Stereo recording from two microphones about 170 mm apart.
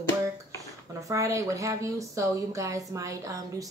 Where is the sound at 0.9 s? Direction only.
20° right (ahead or behind).